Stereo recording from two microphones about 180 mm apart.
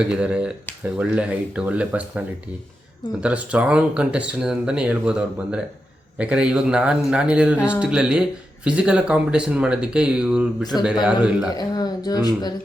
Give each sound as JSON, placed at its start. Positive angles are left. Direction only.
{"t": 0.0, "sound": "speech", "side_deg": -5}
{"t": 11.5, "sound": "speech", "side_deg": 20}